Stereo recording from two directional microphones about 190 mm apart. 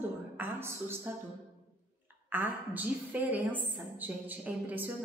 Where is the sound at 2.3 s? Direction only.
10° right (ahead or behind).